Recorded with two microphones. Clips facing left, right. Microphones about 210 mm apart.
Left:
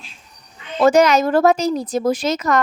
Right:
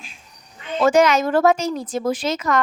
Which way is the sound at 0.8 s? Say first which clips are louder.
Left 2 dB; 40° left (ahead or behind).